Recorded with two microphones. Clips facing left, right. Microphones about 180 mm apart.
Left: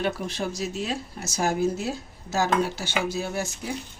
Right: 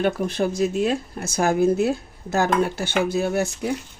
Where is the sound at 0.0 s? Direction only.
55° right (ahead or behind).